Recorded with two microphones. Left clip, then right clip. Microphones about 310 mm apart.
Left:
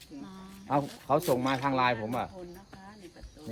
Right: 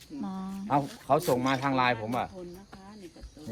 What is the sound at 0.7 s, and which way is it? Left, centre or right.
Speech, centre.